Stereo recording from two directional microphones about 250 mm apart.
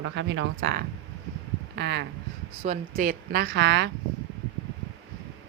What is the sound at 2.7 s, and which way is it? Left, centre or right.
Speech, right.